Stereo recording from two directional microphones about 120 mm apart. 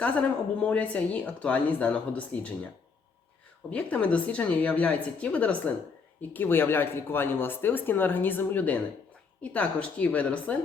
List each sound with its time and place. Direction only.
0.0 s speech: 10° left (ahead or behind)
3.7 s speech: 10° left (ahead or behind)